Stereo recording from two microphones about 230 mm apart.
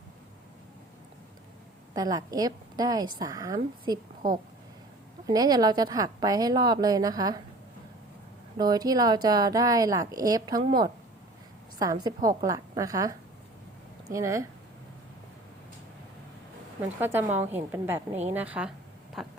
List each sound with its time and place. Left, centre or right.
1.9 s a woman's voice: centre
5.2 s a woman's voice: centre
8.5 s a woman's voice: centre
17.0 s a woman's voice: centre
17.2 s a woman's voice: right
17.5 s a woman's voice: centre
19.2 s a sound: centre